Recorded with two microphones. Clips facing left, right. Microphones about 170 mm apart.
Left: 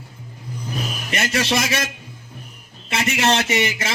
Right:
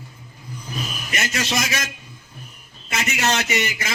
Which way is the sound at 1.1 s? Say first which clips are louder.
Left 4 dB; 30° left (ahead or behind).